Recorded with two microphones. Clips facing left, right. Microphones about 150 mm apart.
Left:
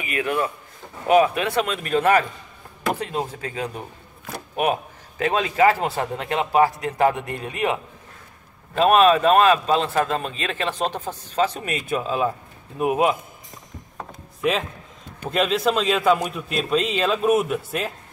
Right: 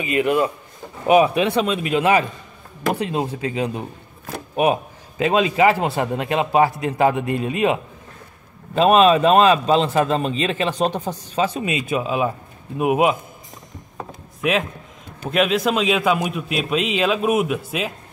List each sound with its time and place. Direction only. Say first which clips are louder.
0.0 s a man's voice: right 5 dB; 20° right (ahead or behind)
15.3 s a man's voice: right 2 dB; 10° right (ahead or behind)